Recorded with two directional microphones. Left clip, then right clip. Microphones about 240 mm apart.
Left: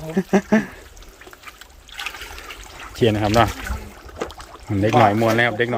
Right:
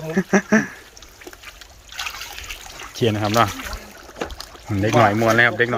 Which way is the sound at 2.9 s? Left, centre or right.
Centre.